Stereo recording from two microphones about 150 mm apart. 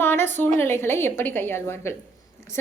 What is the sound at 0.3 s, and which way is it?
A woman's voice, 15° left (ahead or behind).